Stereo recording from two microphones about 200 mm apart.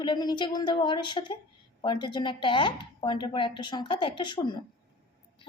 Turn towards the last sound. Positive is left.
turn(degrees=25)  # may be behind; listen again after turning